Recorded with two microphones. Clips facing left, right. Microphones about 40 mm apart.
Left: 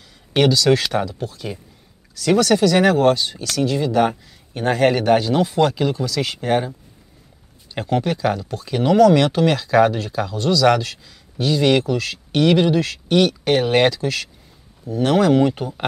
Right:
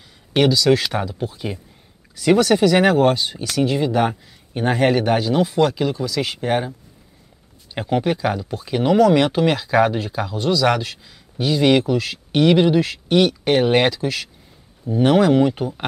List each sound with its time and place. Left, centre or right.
0.3 s speech: centre
7.7 s speech: centre
14.9 s speech: centre